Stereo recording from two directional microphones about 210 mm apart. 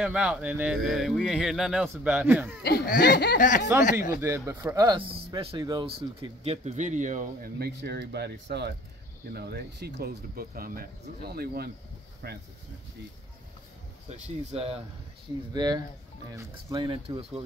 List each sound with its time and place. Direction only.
0.0 s speech: 5° right (ahead or behind)
2.6 s speech: 50° left (ahead or behind)
3.3 s speech: 40° left (ahead or behind)
4.1 s speech: 10° right (ahead or behind); by 12.4 s 50° right (ahead or behind)
14.0 s speech: 35° right (ahead or behind)